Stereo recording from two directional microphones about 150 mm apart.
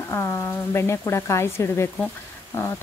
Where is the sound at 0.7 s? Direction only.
15° left (ahead or behind).